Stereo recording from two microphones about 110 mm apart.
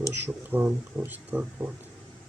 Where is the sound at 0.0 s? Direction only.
20° right (ahead or behind).